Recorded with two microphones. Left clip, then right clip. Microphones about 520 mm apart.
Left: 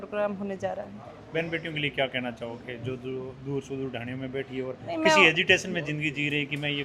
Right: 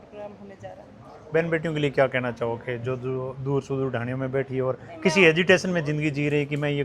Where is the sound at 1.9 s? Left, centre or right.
Right.